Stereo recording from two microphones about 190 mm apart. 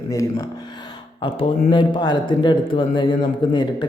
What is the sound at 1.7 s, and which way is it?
Speech, 25° left (ahead or behind).